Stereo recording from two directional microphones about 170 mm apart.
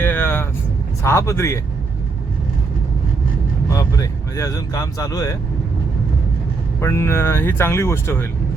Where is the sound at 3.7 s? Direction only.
20° left (ahead or behind).